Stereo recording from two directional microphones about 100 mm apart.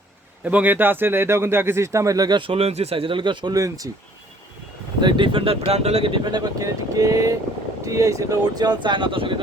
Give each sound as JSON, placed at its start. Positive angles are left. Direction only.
{"t": 0.4, "sound": "speech", "side_deg": -15}
{"t": 2.4, "sound": "speech", "side_deg": -70}
{"t": 3.5, "sound": "speech", "side_deg": -35}
{"t": 4.9, "sound": "speech", "side_deg": -50}
{"t": 6.1, "sound": "speech", "side_deg": -45}